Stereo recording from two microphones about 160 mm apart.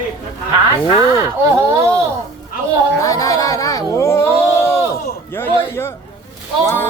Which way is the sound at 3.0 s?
20° left (ahead or behind).